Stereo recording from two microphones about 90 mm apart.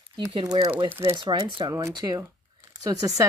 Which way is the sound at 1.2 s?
55° right (ahead or behind).